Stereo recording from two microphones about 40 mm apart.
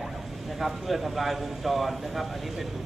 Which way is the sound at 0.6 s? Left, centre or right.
Centre.